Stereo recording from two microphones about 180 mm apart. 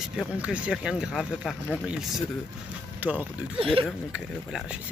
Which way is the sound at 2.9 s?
10° right (ahead or behind).